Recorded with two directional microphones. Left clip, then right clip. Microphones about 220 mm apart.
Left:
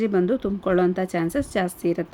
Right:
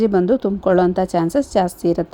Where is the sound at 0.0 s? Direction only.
20° right (ahead or behind).